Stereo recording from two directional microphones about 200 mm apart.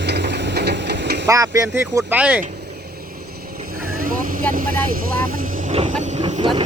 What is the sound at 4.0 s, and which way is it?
Vehicle, 45° right (ahead or behind).